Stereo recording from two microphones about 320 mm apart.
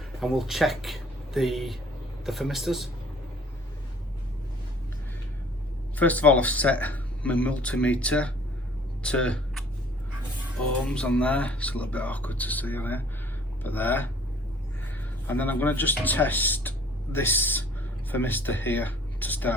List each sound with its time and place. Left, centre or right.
0.2 s speech: centre
6.0 s speech: centre
10.8 s speech: centre
15.3 s speech: centre